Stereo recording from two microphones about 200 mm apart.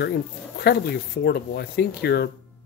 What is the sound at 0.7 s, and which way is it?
Speech, 55° left (ahead or behind).